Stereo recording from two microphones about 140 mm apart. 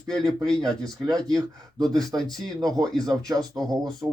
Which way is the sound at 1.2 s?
25° right (ahead or behind).